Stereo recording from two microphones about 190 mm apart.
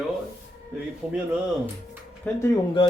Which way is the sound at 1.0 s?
5° right (ahead or behind).